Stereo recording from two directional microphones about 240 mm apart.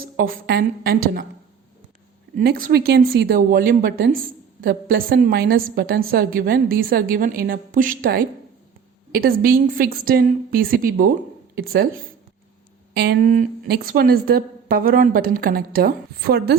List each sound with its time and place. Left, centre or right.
0.2 s a woman's voice: right
2.4 s a woman's voice: right